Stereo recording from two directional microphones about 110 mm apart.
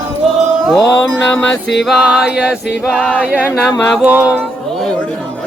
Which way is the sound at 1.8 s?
5° right (ahead or behind).